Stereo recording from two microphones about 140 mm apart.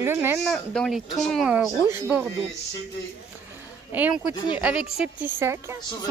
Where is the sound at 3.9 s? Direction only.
10° right (ahead or behind).